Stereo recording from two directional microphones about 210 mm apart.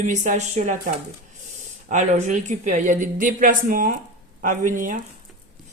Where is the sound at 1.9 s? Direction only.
35° right (ahead or behind).